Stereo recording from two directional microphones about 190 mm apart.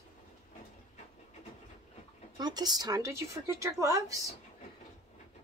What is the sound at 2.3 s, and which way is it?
A woman's voice, 20° right (ahead or behind).